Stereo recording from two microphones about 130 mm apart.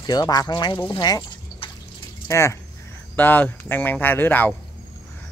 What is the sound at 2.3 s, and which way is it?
Speech, 20° left (ahead or behind).